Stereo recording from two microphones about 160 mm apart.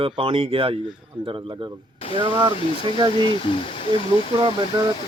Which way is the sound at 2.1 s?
30° right (ahead or behind).